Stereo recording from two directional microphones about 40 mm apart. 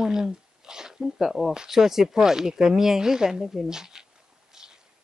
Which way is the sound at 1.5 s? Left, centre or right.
Centre.